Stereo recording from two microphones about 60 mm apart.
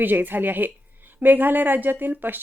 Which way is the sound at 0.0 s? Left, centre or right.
Right.